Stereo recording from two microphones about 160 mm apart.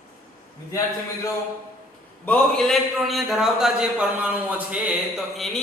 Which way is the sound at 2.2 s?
5° left (ahead or behind).